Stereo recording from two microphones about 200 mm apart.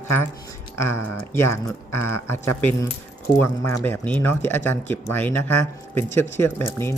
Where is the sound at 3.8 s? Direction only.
10° left (ahead or behind).